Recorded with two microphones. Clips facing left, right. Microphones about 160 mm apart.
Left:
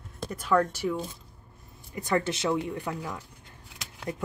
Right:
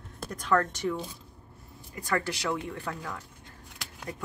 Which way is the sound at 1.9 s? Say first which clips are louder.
Left 3 dB; 20° left (ahead or behind).